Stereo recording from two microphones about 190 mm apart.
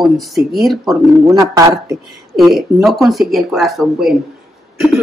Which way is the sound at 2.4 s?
Centre (ahead or behind).